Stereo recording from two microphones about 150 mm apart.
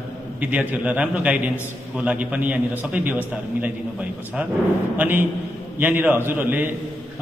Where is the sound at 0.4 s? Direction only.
10° right (ahead or behind).